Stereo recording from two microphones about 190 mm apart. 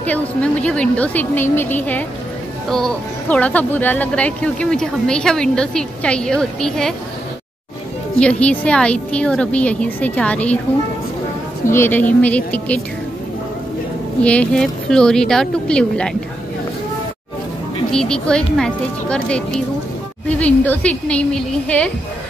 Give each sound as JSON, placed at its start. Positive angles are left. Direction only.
{"t": 0.0, "sound": "a woman's voice", "side_deg": 5}
{"t": 8.2, "sound": "a woman's voice", "side_deg": 5}
{"t": 11.6, "sound": "a woman's voice", "side_deg": 15}
{"t": 14.2, "sound": "speech", "side_deg": 5}
{"t": 17.9, "sound": "a woman's voice", "side_deg": 5}